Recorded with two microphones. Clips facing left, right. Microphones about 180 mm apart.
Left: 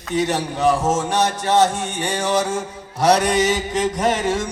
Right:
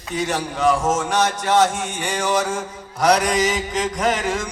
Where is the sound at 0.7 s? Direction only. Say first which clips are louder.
Left 1 dB; 35° left (ahead or behind).